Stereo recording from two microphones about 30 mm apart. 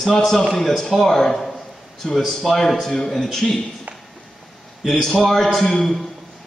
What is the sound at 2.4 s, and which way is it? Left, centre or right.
Speech, centre.